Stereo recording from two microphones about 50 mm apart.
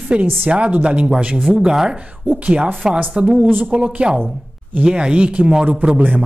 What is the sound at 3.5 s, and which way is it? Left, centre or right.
Speech, right.